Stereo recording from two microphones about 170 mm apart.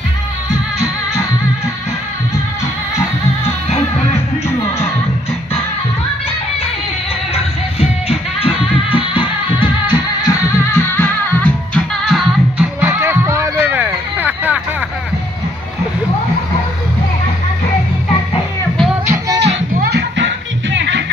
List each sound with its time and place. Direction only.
7.3 s music: 35° left (ahead or behind); by 12.6 s centre (ahead or behind)
12.8 s music: 15° right (ahead or behind)
13.8 s a sound: 10° right (ahead or behind)
19.0 s music: 20° right (ahead or behind)
19.7 s music: 70° right (ahead or behind); by 21.0 s 90° right